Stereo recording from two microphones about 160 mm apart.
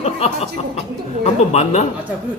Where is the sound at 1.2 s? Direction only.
45° left (ahead or behind).